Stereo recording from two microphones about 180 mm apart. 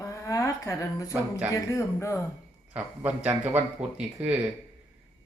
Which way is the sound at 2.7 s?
5° right (ahead or behind).